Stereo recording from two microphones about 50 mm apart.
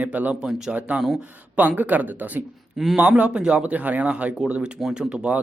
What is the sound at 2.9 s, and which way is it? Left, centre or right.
Speech, right.